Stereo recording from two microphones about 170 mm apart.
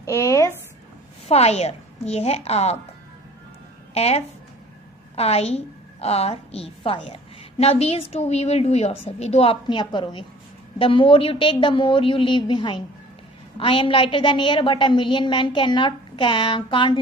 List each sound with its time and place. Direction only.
0.0 s a sound: 20° left (ahead or behind)
1.3 s a woman's voice: 40° left (ahead or behind)
3.9 s a woman's voice: 35° left (ahead or behind)